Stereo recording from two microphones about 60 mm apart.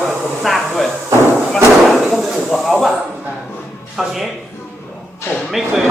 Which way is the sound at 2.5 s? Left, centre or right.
Centre.